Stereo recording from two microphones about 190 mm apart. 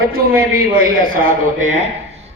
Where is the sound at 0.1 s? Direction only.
50° right (ahead or behind).